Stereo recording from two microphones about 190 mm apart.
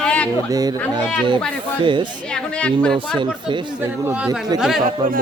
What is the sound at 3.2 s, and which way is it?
Speech, 25° right (ahead or behind).